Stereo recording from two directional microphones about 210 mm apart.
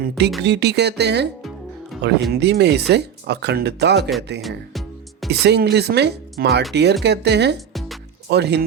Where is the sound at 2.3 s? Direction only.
50° right (ahead or behind).